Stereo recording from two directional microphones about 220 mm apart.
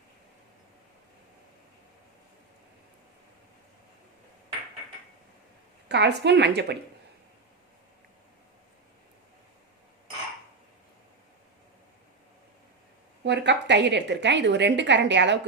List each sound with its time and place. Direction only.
5.9 s a woman's voice: 50° right (ahead or behind)
13.2 s a woman's voice: 50° right (ahead or behind)